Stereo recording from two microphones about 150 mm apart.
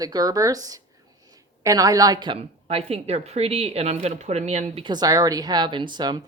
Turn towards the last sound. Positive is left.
turn(degrees=-30)  # may be behind; listen again after turning